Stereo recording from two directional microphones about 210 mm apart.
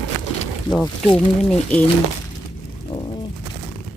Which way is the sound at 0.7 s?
20° left (ahead or behind).